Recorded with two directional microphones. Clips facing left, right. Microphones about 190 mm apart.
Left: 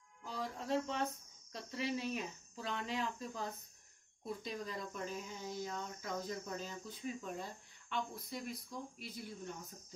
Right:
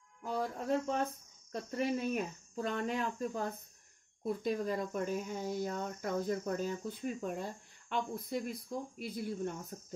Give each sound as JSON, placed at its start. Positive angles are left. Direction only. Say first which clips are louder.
{"t": 0.2, "sound": "speech", "louder": "right 7 dB", "side_deg": -50}